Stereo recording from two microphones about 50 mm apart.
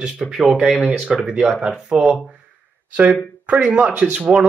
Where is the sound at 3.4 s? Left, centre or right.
Right.